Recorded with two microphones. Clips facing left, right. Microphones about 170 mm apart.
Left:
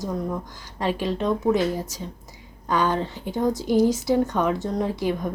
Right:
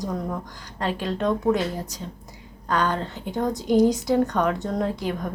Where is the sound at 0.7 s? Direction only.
10° left (ahead or behind).